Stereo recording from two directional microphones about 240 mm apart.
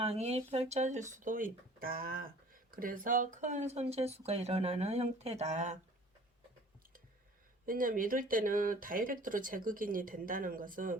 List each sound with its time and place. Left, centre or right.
0.0 s speech: right
7.6 s speech: right